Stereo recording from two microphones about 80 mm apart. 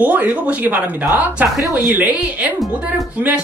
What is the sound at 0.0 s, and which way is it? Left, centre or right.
A woman's voice, right.